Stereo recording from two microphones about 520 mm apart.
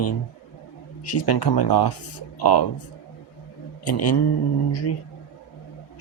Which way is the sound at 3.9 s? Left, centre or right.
Left.